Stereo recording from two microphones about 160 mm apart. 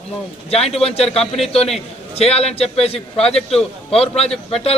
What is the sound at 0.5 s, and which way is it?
A man's voice, 40° left (ahead or behind).